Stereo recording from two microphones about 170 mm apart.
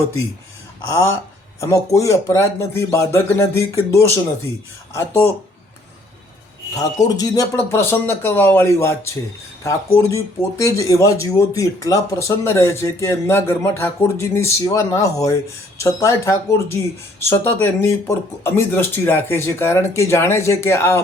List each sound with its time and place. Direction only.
1.6 s speech: 20° left (ahead or behind)
6.7 s speech: 20° left (ahead or behind)